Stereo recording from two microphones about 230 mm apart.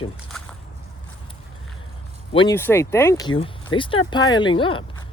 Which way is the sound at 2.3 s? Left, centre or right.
Left.